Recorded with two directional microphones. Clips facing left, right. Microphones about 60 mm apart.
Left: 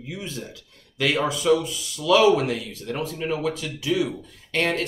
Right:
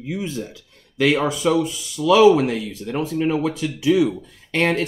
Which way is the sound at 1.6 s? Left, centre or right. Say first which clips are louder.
Right 7 dB; centre.